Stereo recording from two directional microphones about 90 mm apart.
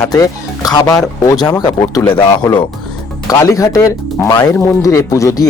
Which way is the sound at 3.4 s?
35° left (ahead or behind).